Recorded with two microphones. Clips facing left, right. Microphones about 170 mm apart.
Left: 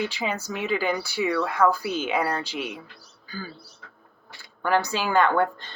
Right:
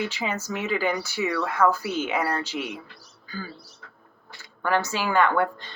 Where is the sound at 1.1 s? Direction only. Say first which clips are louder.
Left 2 dB; 30° left (ahead or behind).